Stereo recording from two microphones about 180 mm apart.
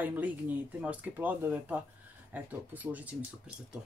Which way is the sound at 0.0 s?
10° right (ahead or behind).